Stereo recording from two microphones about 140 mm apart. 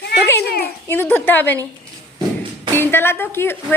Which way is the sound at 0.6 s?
15° left (ahead or behind).